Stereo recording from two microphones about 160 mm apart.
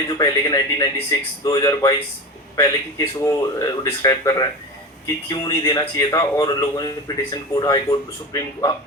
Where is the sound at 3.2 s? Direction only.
20° left (ahead or behind).